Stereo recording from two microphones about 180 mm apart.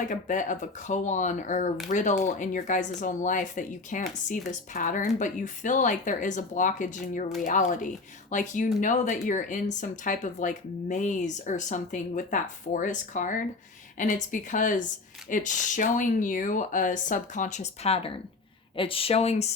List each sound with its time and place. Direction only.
0.0 s speech: 45° left (ahead or behind)